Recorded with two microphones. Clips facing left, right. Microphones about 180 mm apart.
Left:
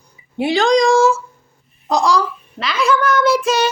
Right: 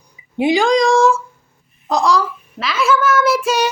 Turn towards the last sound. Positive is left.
turn(degrees=-10)  # may be behind; listen again after turning